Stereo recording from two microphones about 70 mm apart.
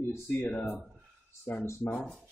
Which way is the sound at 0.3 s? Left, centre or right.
Left.